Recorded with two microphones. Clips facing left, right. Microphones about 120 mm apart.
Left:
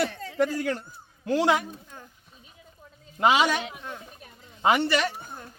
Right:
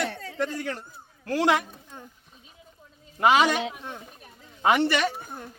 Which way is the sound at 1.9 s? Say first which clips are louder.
Right 2 dB; 20° right (ahead or behind).